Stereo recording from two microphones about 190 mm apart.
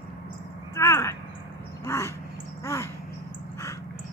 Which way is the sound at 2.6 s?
15° left (ahead or behind).